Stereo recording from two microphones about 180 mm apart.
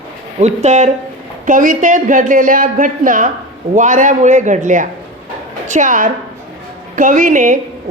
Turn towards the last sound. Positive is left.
turn(degrees=-45)  # may be behind; listen again after turning